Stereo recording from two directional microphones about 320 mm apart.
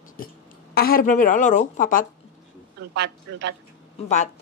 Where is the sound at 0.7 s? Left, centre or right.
Left.